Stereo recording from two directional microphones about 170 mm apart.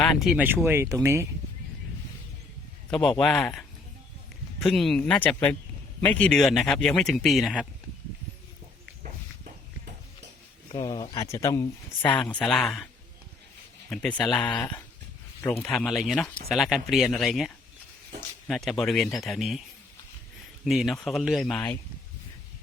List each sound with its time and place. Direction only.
0.2 s speech: centre (ahead or behind)
0.4 s speech: 10° right (ahead or behind)
2.9 s speech: 5° left (ahead or behind)
9.0 s a sound: 50° right (ahead or behind)
10.7 s speech: 25° left (ahead or behind)
12.0 s speech: 25° left (ahead or behind)
12.3 s speech: 5° left (ahead or behind)
13.9 s speech: 5° left (ahead or behind)
20.7 s speech: centre (ahead or behind)
21.4 s speech: 10° left (ahead or behind)